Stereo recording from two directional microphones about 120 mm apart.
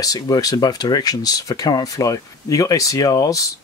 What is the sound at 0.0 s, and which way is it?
Speech, 30° left (ahead or behind).